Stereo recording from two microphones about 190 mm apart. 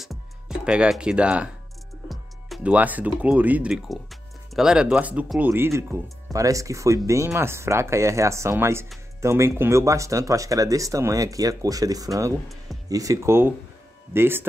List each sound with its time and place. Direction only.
0.0 s music: centre (ahead or behind)
2.0 s speech: 5° right (ahead or behind)